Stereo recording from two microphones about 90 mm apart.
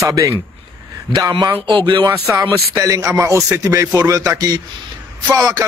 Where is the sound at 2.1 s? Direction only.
35° right (ahead or behind).